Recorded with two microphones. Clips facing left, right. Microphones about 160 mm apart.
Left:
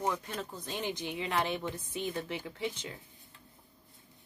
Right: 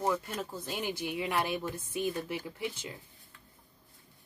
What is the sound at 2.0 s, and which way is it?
Speech, 20° left (ahead or behind).